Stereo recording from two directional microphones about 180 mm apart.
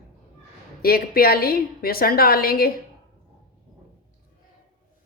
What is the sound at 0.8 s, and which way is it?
A woman's voice, 55° left (ahead or behind).